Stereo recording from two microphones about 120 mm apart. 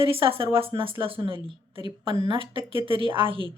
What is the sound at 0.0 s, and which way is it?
Speech, 50° right (ahead or behind).